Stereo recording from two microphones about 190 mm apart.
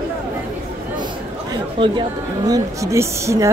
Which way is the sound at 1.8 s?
20° right (ahead or behind).